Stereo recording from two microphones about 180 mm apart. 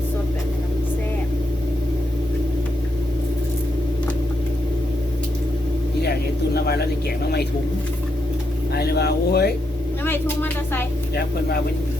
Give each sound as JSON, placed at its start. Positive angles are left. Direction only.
{"t": 6.0, "sound": "a sound", "side_deg": 65}
{"t": 8.7, "sound": "speech", "side_deg": 65}
{"t": 10.0, "sound": "speech", "side_deg": 10}